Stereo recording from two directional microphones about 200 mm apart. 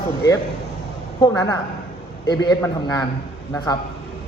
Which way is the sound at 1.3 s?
15° left (ahead or behind).